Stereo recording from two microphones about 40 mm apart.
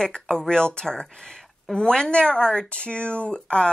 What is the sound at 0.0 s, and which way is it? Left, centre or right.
A woman's voice, centre.